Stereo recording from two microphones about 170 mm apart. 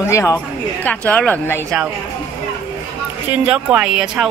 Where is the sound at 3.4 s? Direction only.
5° right (ahead or behind).